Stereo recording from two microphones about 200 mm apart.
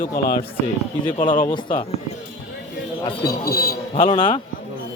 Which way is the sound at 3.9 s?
25° left (ahead or behind).